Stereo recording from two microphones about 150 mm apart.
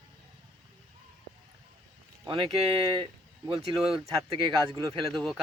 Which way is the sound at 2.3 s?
40° right (ahead or behind).